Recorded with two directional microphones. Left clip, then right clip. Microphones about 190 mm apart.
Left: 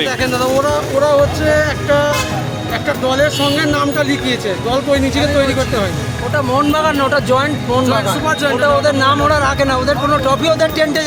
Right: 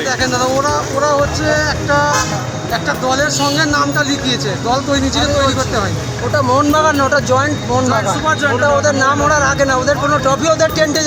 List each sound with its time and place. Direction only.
0.2 s speech: 10° left (ahead or behind)
1.5 s speech: 35° left (ahead or behind)
1.9 s vehicle: 15° left (ahead or behind)
3.2 s speech: 35° left (ahead or behind)
3.7 s speech: 15° left (ahead or behind)
6.7 s speech: 5° left (ahead or behind)
8.3 s speech: 50° left (ahead or behind)
9.0 s speech: 20° left (ahead or behind)